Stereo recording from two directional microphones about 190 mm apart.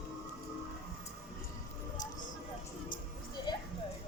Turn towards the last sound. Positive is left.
turn(degrees=25)  # may be behind; listen again after turning